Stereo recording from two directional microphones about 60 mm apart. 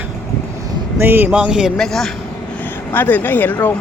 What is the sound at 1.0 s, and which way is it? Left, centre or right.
Speech, right.